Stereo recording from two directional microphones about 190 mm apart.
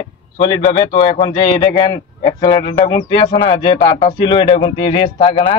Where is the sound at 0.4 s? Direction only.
25° left (ahead or behind).